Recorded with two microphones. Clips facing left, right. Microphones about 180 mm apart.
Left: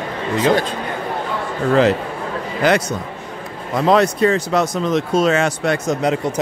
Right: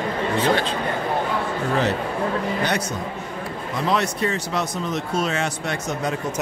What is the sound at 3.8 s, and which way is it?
Speech, 90° left.